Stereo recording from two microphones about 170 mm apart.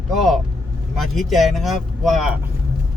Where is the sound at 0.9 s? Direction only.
Centre (ahead or behind).